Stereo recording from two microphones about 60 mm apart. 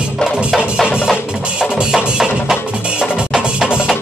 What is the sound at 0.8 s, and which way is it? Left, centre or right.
Music, centre.